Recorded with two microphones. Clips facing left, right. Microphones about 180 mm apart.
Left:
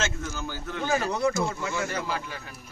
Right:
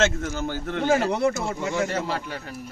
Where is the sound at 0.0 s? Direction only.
65° right (ahead or behind).